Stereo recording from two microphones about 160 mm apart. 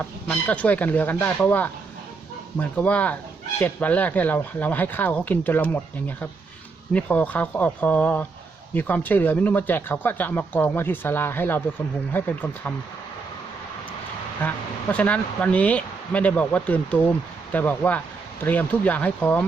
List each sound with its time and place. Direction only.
0.3 s speech: 10° left (ahead or behind)
14.4 s speech: 10° left (ahead or behind)